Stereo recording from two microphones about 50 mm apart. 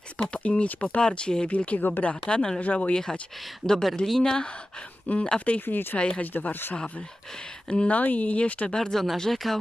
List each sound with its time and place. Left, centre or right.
0.2 s speech: left
2.2 s a woman's voice: centre
2.6 s speech: left
3.6 s a woman's voice: centre
5.0 s speech: left
6.3 s speech: left
7.7 s speech: left
8.0 s speech: left
8.7 s a woman's voice: centre